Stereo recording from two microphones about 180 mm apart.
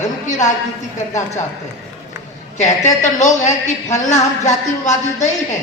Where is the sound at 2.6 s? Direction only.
40° left (ahead or behind).